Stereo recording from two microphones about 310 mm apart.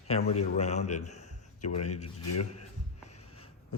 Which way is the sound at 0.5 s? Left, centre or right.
Left.